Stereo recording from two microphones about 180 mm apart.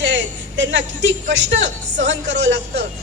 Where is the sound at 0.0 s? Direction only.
85° right.